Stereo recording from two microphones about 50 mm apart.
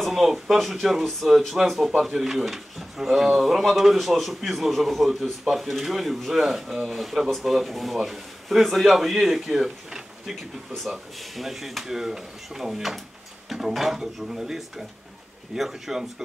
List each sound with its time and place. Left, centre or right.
0.0 s speech: centre